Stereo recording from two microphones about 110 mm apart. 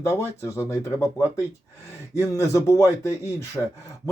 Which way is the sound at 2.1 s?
30° left (ahead or behind).